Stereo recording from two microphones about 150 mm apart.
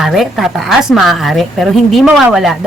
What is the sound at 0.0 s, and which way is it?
A woman's voice, centre (ahead or behind).